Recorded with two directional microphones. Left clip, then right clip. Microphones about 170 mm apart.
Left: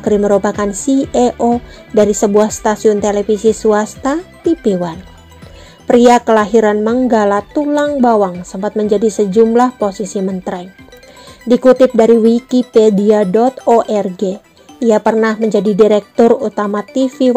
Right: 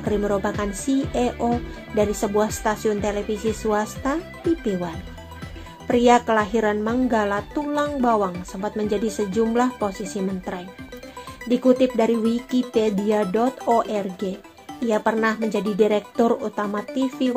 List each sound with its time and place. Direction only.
0.0 s speech: 45° left (ahead or behind)